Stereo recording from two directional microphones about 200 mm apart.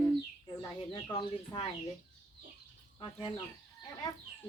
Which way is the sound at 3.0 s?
25° left (ahead or behind).